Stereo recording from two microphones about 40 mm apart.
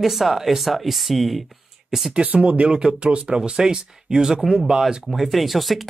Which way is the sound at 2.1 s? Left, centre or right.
Right.